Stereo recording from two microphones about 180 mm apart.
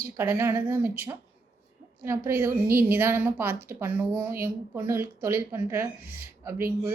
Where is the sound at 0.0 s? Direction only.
15° right (ahead or behind).